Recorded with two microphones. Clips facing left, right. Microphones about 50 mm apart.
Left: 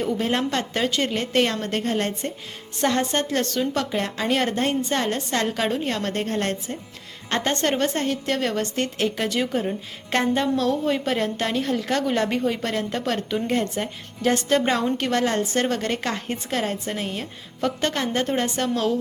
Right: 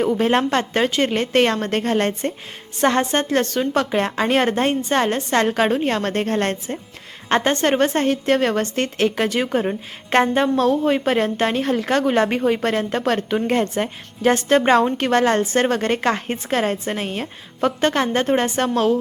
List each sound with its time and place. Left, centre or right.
0.0 s a woman's voice: right
3.0 s a woman's voice: right
3.8 s a woman's voice: right
7.3 s a woman's voice: right